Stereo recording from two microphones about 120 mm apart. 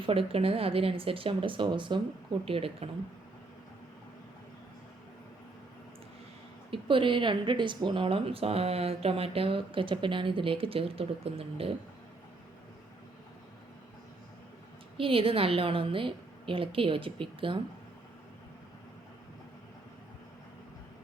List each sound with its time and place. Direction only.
0.0 s speech: 50° right (ahead or behind)
6.7 s speech: 45° right (ahead or behind)
14.9 s speech: 50° right (ahead or behind)